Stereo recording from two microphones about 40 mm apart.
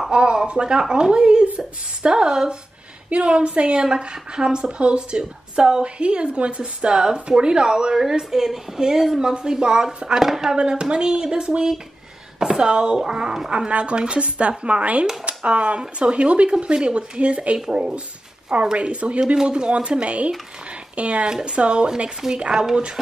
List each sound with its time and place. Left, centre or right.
0.1 s a woman's voice: right; by 10.5 s centre
10.5 s a woman's voice: centre
13.5 s a woman's voice: right
19.3 s a woman's voice: centre
21.3 s a woman's voice: right
22.5 s speech: centre